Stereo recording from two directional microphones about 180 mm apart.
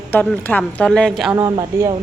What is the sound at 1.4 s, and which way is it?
Speech, 15° right (ahead or behind).